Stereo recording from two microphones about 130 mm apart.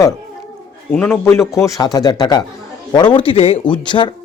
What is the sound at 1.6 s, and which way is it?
A man's voice, 25° left (ahead or behind).